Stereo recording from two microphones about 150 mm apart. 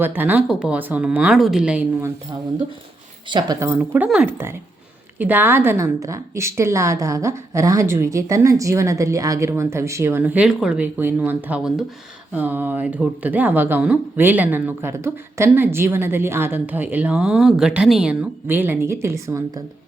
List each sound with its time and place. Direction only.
0.0 s speech: 15° right (ahead or behind)
3.2 s a woman's voice: 30° right (ahead or behind)
3.8 s a woman's voice: 10° right (ahead or behind)